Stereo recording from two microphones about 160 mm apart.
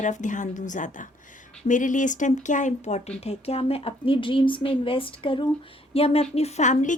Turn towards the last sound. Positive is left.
turn(degrees=50)  # may be behind; listen again after turning